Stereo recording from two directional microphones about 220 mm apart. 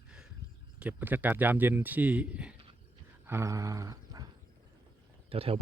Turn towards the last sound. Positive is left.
turn(degrees=-25)  # may be behind; listen again after turning